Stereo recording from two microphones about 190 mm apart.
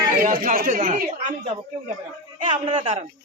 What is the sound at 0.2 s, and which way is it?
Speech, 45° right (ahead or behind).